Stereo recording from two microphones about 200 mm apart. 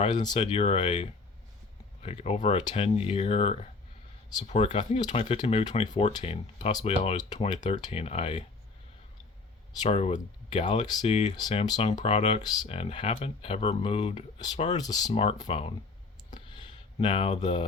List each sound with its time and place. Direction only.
0.0 s speech: 20° left (ahead or behind)
9.8 s speech: 35° left (ahead or behind)
16.3 s a sound: 25° left (ahead or behind)